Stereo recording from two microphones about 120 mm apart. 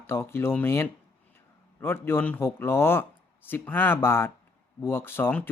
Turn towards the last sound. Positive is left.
turn(degrees=15)  # may be behind; listen again after turning